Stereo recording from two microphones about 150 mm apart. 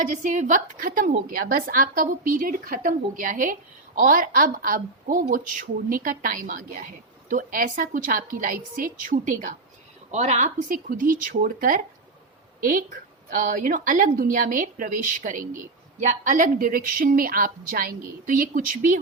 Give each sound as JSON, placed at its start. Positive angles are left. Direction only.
{"t": 0.0, "sound": "a woman's voice", "side_deg": -55}
{"t": 10.1, "sound": "a woman's voice", "side_deg": -50}